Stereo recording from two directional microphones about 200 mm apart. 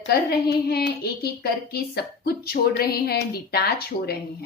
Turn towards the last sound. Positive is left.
turn(degrees=50)  # may be behind; listen again after turning